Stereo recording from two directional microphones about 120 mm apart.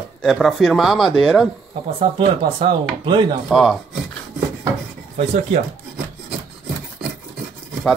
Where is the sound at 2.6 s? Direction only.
40° right (ahead or behind).